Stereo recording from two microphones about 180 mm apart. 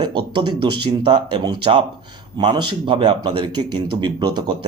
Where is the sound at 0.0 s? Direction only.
25° right (ahead or behind).